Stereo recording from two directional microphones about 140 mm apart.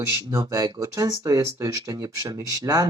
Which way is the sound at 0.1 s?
25° right (ahead or behind).